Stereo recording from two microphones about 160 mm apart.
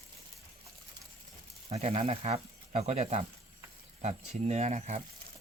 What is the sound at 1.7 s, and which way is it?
Speech, 40° right (ahead or behind).